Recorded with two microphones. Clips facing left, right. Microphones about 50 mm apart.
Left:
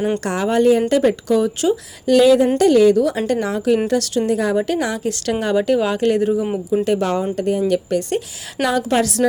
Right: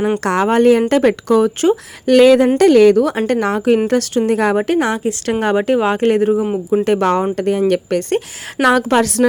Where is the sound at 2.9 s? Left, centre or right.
Right.